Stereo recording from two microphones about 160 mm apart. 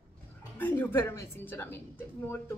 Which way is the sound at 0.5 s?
10° left (ahead or behind).